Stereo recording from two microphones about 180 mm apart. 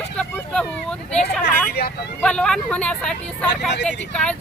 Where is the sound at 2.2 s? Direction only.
5° left (ahead or behind).